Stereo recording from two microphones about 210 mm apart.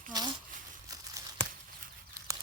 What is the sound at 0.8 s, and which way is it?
Tearing, 20° right (ahead or behind).